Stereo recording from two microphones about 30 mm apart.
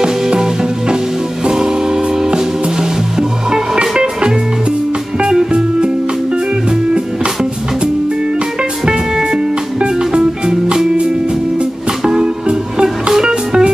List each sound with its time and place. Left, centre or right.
0.0 s music: right
3.2 s music: right
9.8 s music: right
12.0 s music: right
12.8 s music: centre